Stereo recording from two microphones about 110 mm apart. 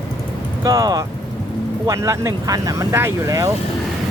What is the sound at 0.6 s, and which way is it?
Speech, 35° right (ahead or behind).